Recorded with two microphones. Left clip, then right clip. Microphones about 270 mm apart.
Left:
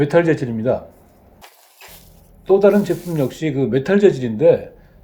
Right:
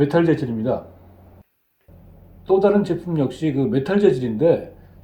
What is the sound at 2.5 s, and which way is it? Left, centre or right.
Speech, left.